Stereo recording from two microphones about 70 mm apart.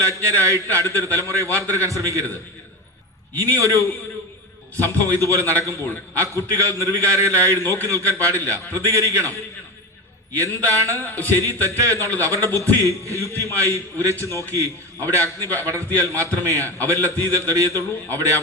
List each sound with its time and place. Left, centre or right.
0.0 s a man's voice: right
3.5 s a man's voice: right
10.3 s a man's voice: right
11.0 s speech: left
11.3 s a man's voice: right
16.6 s speech: left
16.9 s a man's voice: right